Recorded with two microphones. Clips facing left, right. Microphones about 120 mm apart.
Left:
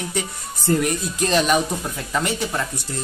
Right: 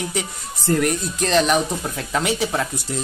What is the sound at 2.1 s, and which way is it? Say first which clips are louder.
Speech: right 2 dB; 5° right (ahead or behind).